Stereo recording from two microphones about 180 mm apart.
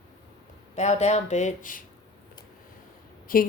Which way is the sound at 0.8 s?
40° left (ahead or behind).